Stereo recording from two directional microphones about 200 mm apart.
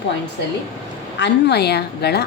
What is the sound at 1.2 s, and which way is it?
A woman's voice, 60° left (ahead or behind).